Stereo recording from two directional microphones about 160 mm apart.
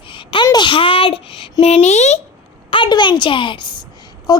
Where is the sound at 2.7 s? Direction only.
30° left (ahead or behind).